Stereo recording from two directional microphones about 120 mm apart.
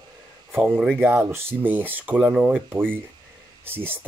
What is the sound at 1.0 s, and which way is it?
Speech, 15° right (ahead or behind).